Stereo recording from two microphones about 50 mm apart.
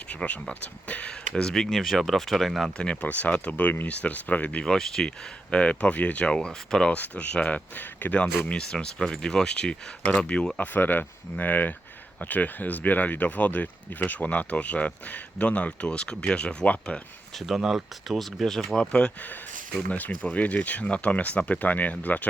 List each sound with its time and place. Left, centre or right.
0.1 s speech: left
1.4 s speech: centre
2.7 s speech: left
4.6 s speech: centre
5.0 s speech: left
6.9 s speech: left
8.4 s speech: centre
10.6 s speech: left
17.5 s speech: centre
18.8 s speech: centre
19.9 s speech: left